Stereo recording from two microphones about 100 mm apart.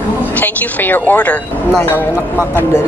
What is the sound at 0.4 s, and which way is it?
Speech, 15° left (ahead or behind).